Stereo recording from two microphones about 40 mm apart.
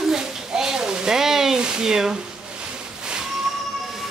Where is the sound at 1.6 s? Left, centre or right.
Centre.